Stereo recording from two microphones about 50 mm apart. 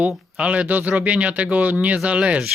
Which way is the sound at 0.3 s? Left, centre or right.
Right.